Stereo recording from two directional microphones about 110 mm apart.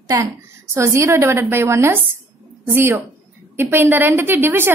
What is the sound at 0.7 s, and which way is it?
A woman's voice, 25° right (ahead or behind).